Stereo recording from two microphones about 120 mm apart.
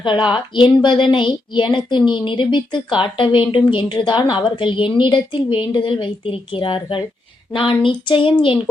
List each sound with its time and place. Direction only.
0.0 s a woman's voice: 40° left (ahead or behind)